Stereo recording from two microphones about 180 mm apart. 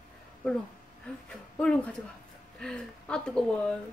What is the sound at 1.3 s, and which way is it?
Speech, 5° left (ahead or behind).